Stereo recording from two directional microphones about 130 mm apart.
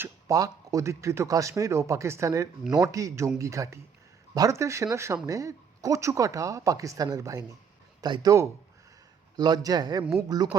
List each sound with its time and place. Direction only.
0.0 s a man's voice: 25° right (ahead or behind)